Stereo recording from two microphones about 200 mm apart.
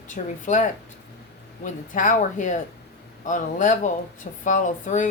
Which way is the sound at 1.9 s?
40° left (ahead or behind).